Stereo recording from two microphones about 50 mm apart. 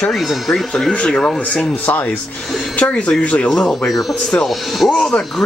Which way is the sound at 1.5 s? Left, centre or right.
Left.